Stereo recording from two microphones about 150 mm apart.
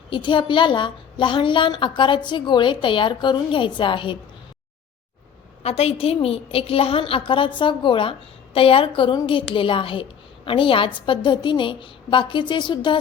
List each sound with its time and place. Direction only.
0.1 s a woman's voice: 30° left (ahead or behind)
5.6 s a woman's voice: 40° left (ahead or behind)